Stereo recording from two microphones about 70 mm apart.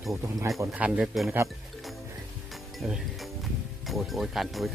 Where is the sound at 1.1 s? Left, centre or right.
Centre.